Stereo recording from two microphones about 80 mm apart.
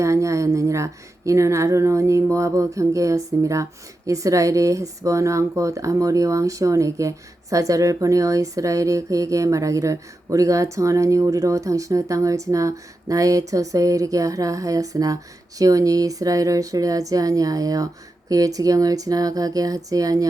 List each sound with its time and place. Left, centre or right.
0.0 s a woman's voice: right